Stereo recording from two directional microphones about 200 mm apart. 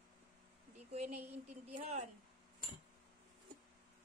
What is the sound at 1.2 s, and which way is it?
Speech, 10° right (ahead or behind).